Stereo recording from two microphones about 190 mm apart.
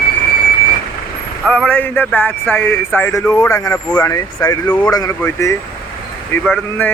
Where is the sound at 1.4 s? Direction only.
5° left (ahead or behind).